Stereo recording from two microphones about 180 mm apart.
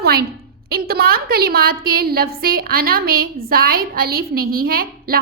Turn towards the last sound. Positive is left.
turn(degrees=-55)  # may be behind; listen again after turning